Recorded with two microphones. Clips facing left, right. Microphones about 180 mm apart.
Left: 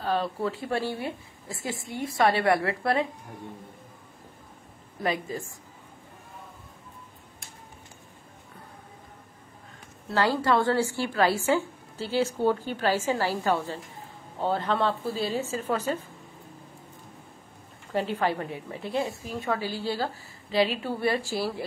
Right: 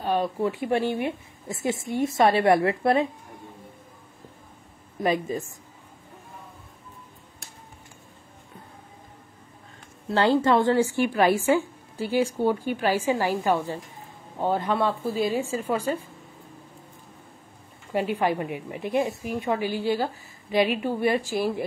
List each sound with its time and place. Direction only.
0.0 s a woman's voice: 15° right (ahead or behind)
5.0 s a woman's voice: 20° right (ahead or behind)
10.1 s a woman's voice: 25° right (ahead or behind)
17.9 s a woman's voice: 10° right (ahead or behind)